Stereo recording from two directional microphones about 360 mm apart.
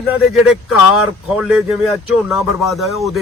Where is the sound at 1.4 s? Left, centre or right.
Centre.